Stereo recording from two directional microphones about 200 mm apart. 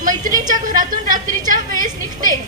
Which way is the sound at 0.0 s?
40° right (ahead or behind).